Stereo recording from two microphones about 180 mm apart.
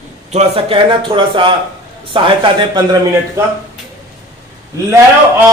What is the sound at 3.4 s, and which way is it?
Speech, 15° right (ahead or behind).